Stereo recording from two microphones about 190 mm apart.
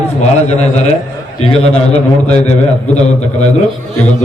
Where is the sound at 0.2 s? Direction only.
35° left (ahead or behind).